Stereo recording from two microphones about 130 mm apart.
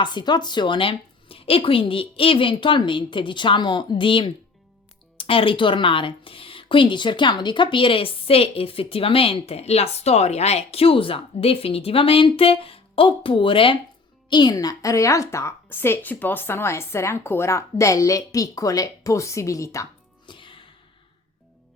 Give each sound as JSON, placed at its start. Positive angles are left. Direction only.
{"t": 0.0, "sound": "a woman's voice", "side_deg": 35}
{"t": 20.2, "sound": "music", "side_deg": 40}